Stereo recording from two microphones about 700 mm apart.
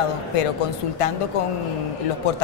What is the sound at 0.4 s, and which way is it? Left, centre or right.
Speech, left.